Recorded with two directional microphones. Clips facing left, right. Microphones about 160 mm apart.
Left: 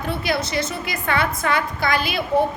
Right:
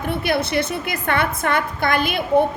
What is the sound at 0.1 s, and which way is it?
A woman's voice, 55° right (ahead or behind).